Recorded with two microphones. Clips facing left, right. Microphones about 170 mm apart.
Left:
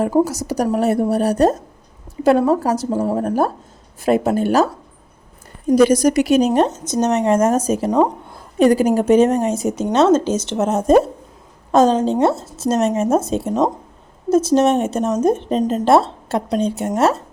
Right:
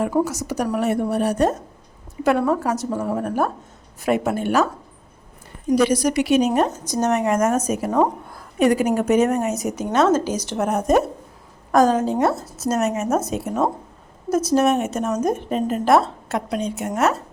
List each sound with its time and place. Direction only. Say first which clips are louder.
0.0 s a woman's voice: left 4 dB; 35° left (ahead or behind)